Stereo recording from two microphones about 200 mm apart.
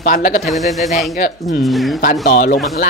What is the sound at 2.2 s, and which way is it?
Speech, 45° left (ahead or behind).